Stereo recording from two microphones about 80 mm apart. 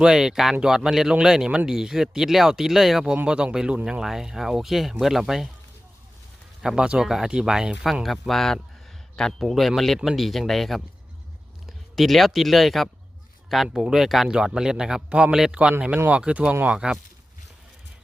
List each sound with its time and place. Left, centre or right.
0.0 s a man's voice: centre
6.6 s speech: centre
8.0 s a man's voice: centre